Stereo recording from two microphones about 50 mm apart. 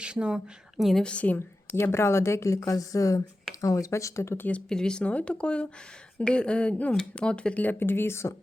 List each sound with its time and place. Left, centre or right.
0.0 s speech: centre
0.8 s a woman's voice: centre
1.0 s speech: left
1.4 s a woman's voice: left
4.7 s speech: centre
7.6 s speech: left